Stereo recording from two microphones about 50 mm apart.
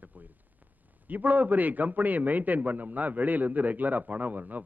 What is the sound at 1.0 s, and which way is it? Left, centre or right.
A man's voice, right.